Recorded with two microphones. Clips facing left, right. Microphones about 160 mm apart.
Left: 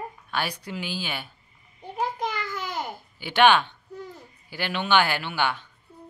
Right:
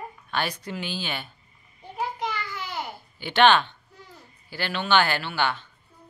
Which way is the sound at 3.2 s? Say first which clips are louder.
Even; 10° left (ahead or behind).